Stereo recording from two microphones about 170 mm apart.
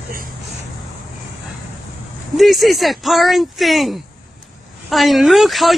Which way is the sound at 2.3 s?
Centre (ahead or behind).